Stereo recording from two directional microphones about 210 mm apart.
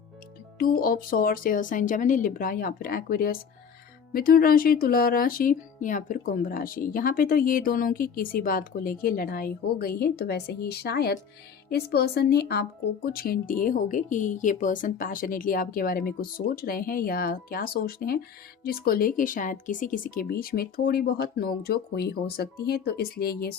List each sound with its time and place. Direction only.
0.6 s speech: 45° left (ahead or behind)